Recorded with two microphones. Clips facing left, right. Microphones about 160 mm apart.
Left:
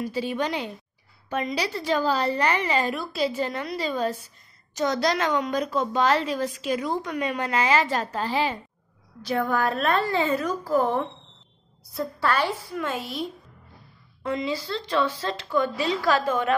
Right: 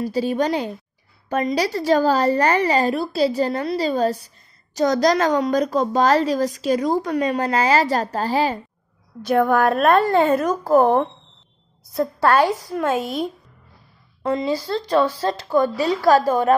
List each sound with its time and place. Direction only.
0.0 s a woman's voice: 40° right (ahead or behind)
9.2 s a woman's voice: 55° right (ahead or behind); by 16.5 s 40° right (ahead or behind)